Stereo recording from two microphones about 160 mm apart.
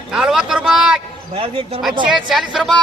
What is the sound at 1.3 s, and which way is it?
Speech, 35° right (ahead or behind).